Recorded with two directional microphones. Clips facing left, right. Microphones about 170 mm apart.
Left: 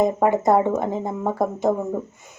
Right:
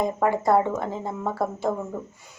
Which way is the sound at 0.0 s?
20° left (ahead or behind).